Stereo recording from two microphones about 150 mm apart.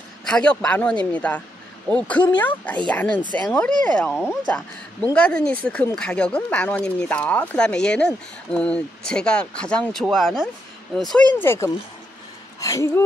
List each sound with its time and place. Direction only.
0.2 s a man's voice: 5° left (ahead or behind)
11.3 s speech: 15° left (ahead or behind)